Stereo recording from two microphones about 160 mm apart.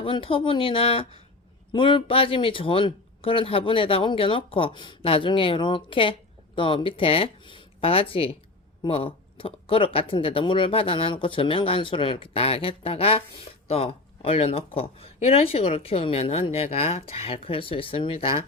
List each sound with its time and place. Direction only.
0.0 s speech: 35° left (ahead or behind)